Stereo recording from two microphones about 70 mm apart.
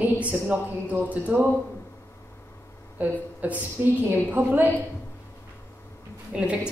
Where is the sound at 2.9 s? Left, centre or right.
Right.